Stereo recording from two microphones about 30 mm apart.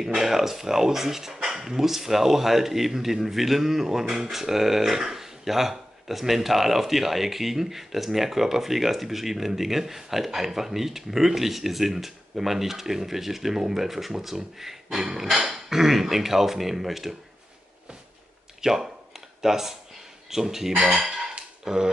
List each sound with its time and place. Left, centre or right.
0.0 s speech: centre
18.6 s a sound: centre
20.2 s speech: centre
20.9 s dishes: centre
21.6 s speech: centre